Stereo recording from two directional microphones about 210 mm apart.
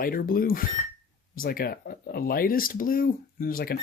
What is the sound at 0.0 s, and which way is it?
Speech, 45° left (ahead or behind).